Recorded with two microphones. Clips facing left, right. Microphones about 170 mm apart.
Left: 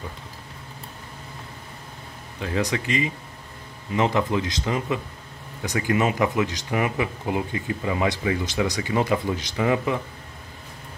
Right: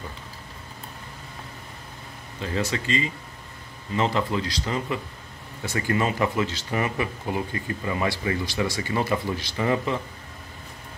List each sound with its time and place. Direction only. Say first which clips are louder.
2.4 s speech: left 2 dB; 15° left (ahead or behind)